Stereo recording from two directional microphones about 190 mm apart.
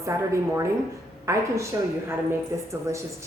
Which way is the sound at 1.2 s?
15° right (ahead or behind).